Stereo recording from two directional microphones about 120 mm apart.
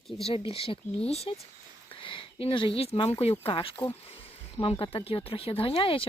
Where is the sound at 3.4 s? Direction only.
50° left (ahead or behind).